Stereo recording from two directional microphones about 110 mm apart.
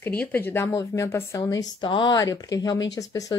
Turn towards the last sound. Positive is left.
turn(degrees=30)  # may be behind; listen again after turning